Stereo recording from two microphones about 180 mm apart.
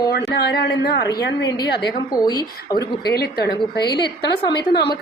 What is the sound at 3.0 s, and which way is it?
A woman's voice, 60° left (ahead or behind).